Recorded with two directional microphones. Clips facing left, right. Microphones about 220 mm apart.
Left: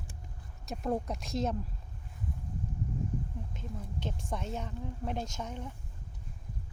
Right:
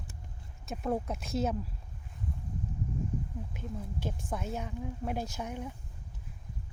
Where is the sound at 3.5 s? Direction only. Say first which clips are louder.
Right 2 dB; 10° right (ahead or behind).